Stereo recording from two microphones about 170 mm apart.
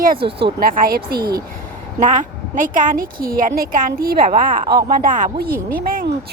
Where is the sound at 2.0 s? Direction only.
50° right (ahead or behind).